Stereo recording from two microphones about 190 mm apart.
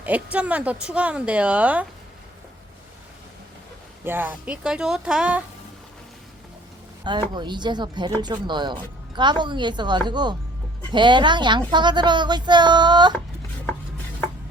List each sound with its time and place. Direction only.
0.0 s speech: 5° right (ahead or behind)
4.0 s speech: 10° right (ahead or behind)
7.3 s speech: 25° right (ahead or behind)